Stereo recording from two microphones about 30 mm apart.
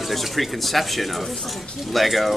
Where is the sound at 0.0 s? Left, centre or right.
Centre.